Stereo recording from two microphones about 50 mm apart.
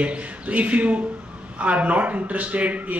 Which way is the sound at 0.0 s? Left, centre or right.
Right.